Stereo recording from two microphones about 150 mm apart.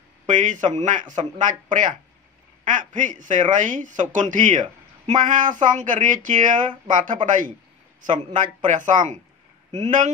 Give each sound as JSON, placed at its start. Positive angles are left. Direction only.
{"t": 0.3, "sound": "a man's voice", "side_deg": -55}